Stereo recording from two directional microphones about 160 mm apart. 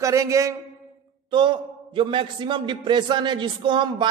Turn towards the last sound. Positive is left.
turn(degrees=-30)  # may be behind; listen again after turning